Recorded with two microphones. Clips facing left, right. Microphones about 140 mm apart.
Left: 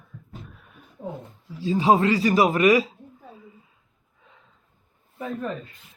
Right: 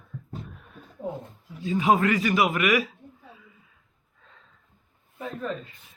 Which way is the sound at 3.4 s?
30° left (ahead or behind).